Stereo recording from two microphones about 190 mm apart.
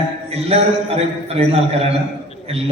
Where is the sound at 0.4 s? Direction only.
30° right (ahead or behind).